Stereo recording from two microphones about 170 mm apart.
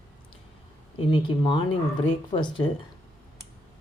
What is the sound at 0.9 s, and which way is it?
Speech, 30° left (ahead or behind).